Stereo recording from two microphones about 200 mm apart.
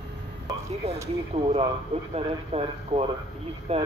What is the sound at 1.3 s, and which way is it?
Speech, 30° right (ahead or behind).